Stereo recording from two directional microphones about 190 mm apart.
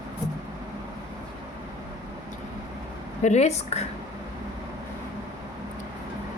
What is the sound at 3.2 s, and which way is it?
Speech, 40° left (ahead or behind).